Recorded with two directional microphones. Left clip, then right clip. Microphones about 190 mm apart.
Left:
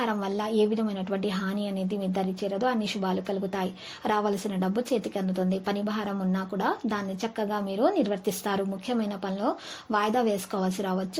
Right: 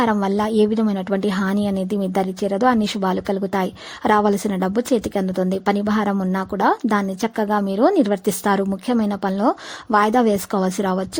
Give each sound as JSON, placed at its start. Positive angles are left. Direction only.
{"t": 0.0, "sound": "a woman's voice", "side_deg": -40}